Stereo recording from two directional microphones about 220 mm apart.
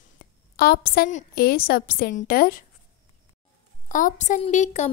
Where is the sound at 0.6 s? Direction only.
45° left (ahead or behind).